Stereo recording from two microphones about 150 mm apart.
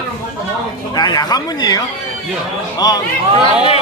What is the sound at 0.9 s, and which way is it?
Speech, 25° left (ahead or behind).